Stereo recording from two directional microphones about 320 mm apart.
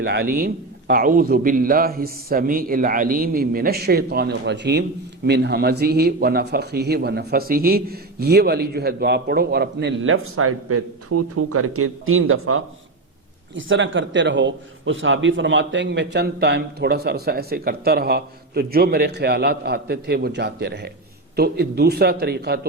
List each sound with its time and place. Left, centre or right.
0.0 s a man's voice: right